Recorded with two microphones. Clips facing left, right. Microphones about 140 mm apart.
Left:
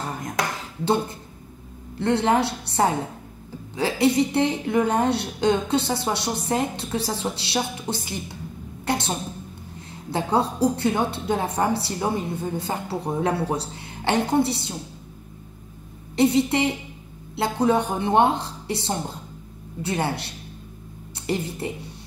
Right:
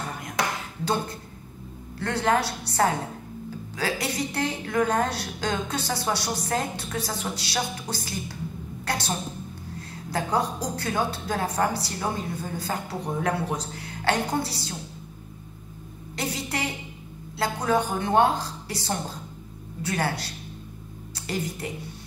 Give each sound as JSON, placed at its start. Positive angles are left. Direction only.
{"t": 2.0, "sound": "a woman's voice", "side_deg": 25}
{"t": 16.2, "sound": "a woman's voice", "side_deg": 25}